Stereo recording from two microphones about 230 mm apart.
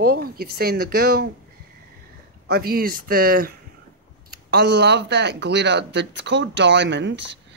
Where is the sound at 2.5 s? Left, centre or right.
Right.